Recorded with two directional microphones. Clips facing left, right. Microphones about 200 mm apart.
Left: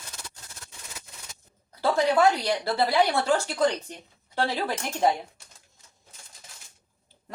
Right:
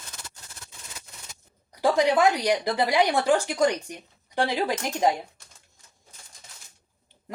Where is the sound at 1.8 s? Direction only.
15° right (ahead or behind).